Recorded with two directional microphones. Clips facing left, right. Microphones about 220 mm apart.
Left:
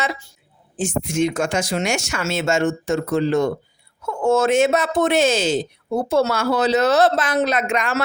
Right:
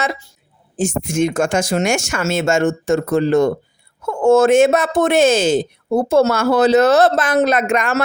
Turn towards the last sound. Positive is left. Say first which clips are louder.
# right 4 dB
turn(degrees=-50)  # may be behind; listen again after turning